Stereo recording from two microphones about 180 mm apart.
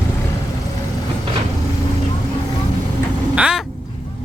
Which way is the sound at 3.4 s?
5° right (ahead or behind).